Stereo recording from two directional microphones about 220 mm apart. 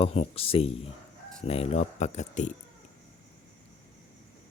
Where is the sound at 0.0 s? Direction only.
25° left (ahead or behind).